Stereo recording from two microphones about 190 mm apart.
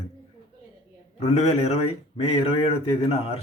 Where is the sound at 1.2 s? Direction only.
35° left (ahead or behind).